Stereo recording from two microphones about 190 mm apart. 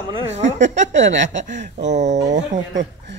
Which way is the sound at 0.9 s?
75° right (ahead or behind).